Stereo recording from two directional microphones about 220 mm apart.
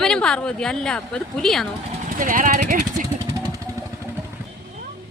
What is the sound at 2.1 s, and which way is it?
Speech, 40° right (ahead or behind).